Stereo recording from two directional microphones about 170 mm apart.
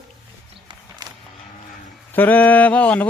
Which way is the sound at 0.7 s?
25° right (ahead or behind).